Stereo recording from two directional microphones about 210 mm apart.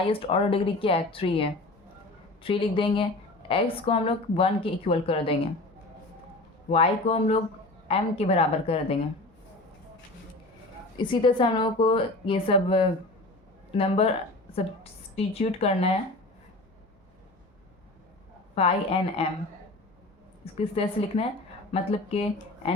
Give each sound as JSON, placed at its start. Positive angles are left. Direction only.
{"t": 0.1, "sound": "speech", "side_deg": 25}
{"t": 6.7, "sound": "speech", "side_deg": 30}
{"t": 10.9, "sound": "speech", "side_deg": 25}
{"t": 15.1, "sound": "speech", "side_deg": 30}
{"t": 18.5, "sound": "speech", "side_deg": 30}
{"t": 20.4, "sound": "speech", "side_deg": 25}